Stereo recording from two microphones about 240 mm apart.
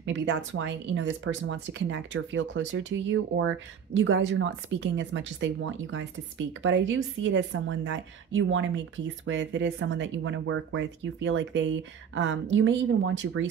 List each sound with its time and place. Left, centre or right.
0.0 s speech: right